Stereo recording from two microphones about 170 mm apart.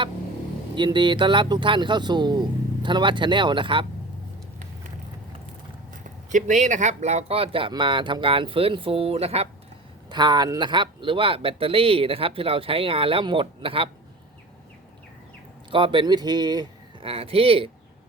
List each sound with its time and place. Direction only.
0.8 s a man's voice: 25° right (ahead or behind)
6.3 s speech: 45° right (ahead or behind)
10.1 s speech: 25° right (ahead or behind)
15.7 s a man's voice: 30° right (ahead or behind)